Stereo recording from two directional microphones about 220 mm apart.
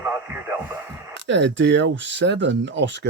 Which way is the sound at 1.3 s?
55° right (ahead or behind).